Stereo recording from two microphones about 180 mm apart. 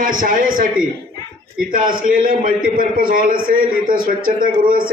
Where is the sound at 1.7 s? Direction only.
50° right (ahead or behind).